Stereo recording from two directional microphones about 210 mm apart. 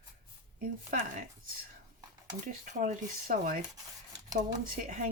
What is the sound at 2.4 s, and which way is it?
Speech, 40° right (ahead or behind).